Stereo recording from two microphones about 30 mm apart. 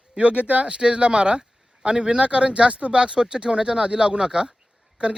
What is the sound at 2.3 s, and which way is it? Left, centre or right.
Speech, right.